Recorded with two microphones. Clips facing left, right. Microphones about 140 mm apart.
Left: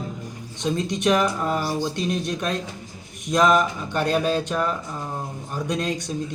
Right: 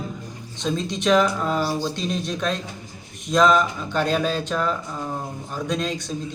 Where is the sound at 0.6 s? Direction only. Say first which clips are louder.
Left 1 dB; 15° left (ahead or behind).